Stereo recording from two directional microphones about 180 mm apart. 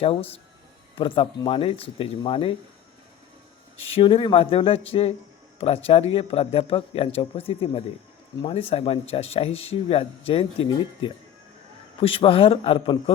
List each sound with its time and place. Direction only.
0.0 s speech: 30° left (ahead or behind)
3.9 s speech: 30° left (ahead or behind)